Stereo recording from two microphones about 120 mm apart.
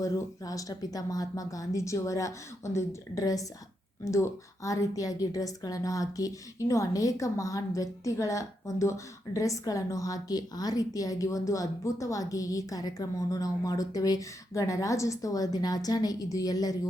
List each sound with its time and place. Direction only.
0.0 s a woman's voice: 30° left (ahead or behind)